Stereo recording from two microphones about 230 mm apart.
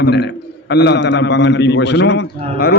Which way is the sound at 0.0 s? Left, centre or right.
Left.